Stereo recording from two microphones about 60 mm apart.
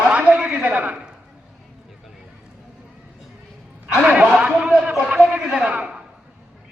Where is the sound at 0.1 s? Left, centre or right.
Centre.